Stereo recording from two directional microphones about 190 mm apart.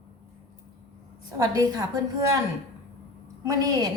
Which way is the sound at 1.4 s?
20° right (ahead or behind).